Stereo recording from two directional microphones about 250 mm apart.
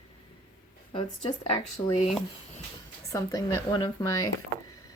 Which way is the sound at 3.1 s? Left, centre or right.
Centre.